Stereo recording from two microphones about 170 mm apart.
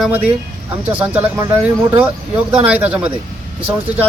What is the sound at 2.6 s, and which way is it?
Speech, 10° right (ahead or behind).